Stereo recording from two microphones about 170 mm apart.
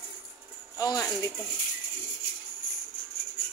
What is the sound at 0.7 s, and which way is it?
Speech, 20° left (ahead or behind).